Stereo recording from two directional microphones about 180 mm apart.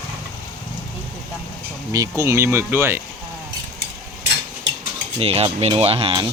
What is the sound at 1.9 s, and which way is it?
Speech, 20° right (ahead or behind).